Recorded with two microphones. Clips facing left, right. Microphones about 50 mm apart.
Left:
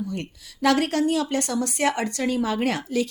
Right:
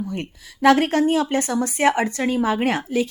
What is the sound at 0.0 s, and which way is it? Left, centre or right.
A woman's voice, right.